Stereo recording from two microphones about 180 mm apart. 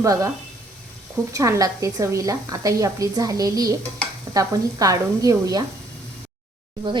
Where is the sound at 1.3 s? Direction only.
20° right (ahead or behind).